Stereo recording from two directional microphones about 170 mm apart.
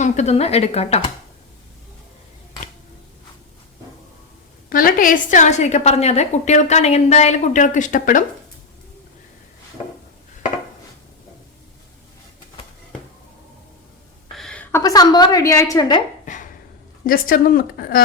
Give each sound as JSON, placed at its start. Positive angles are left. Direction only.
{"t": 0.0, "sound": "speech", "side_deg": 40}
{"t": 4.7, "sound": "a woman's voice", "side_deg": 55}
{"t": 14.3, "sound": "a sound", "side_deg": 5}
{"t": 14.8, "sound": "a woman's voice", "side_deg": 25}
{"t": 16.2, "sound": "a sound", "side_deg": 50}
{"t": 17.1, "sound": "a woman's voice", "side_deg": 55}